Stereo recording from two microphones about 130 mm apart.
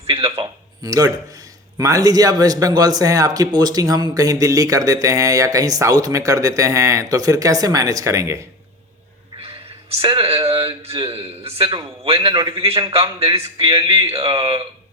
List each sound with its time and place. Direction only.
0.1 s a man's voice: 45° right (ahead or behind)
0.3 s a man's voice: 30° right (ahead or behind)
9.9 s a man's voice: 45° right (ahead or behind)
12.6 s a man's voice: 45° right (ahead or behind)